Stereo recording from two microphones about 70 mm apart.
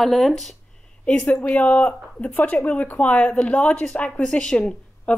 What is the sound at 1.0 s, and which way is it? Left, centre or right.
Speech, centre.